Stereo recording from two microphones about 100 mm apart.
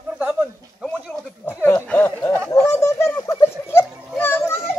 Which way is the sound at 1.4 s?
15° left (ahead or behind).